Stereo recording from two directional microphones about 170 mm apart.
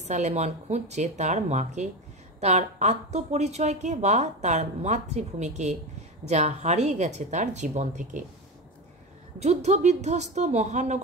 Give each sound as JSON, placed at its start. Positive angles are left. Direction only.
{"t": 0.0, "sound": "a woman's voice", "side_deg": -40}
{"t": 9.4, "sound": "a woman's voice", "side_deg": -40}